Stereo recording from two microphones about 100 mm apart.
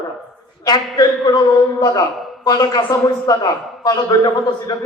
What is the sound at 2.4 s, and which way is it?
A man's voice, 40° left (ahead or behind).